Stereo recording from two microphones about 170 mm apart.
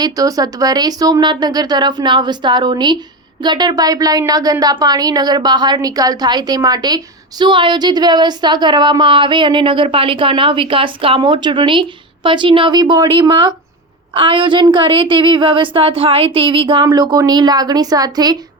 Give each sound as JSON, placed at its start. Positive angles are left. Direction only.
{"t": 0.0, "sound": "a woman's voice", "side_deg": -20}